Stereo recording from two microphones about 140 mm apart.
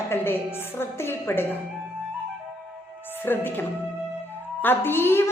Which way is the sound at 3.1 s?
15° left (ahead or behind).